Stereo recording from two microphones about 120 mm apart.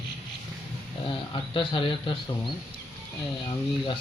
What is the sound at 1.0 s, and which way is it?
Speech, 45° left (ahead or behind).